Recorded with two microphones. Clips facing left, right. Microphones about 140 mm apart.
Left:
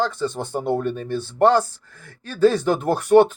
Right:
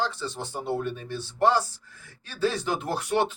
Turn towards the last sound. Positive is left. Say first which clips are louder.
# left 11 dB
turn(degrees=45)  # may be behind; listen again after turning